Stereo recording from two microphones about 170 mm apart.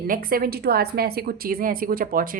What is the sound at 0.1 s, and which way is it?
Speech, 60° right (ahead or behind).